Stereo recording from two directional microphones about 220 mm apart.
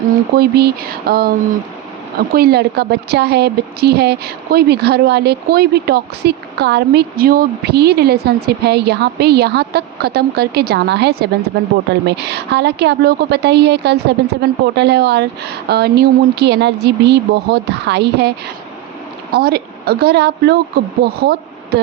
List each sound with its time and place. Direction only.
0.3 s a woman's voice: 45° right (ahead or behind)